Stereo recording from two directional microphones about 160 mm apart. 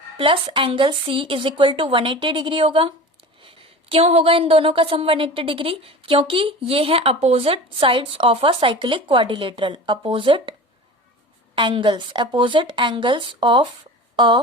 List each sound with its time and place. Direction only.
0.2 s speech: 30° right (ahead or behind)
11.5 s speech: 30° right (ahead or behind)
14.2 s a sound: 30° right (ahead or behind)